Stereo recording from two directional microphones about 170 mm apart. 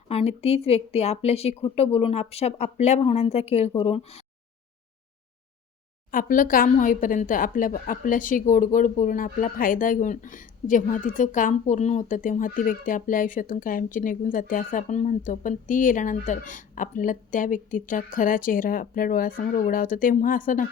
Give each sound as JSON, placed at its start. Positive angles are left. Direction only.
{"t": 0.1, "sound": "speech", "side_deg": 35}
{"t": 6.1, "sound": "a woman's voice", "side_deg": 55}